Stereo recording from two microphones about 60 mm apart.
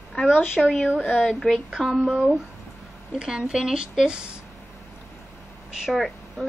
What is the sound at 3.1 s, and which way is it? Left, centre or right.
A woman's voice, centre.